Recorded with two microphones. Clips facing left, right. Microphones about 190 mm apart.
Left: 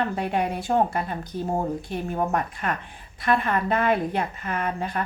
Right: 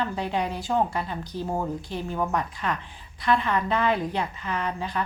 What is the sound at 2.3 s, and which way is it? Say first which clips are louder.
A woman's voice: left 1 dB; 50° left (ahead or behind).